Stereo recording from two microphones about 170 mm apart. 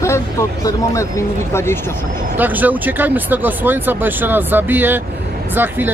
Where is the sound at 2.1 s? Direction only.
50° right (ahead or behind).